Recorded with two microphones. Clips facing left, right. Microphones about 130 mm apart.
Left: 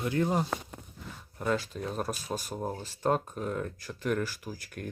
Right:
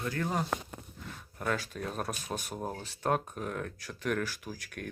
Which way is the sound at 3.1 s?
5° right (ahead or behind).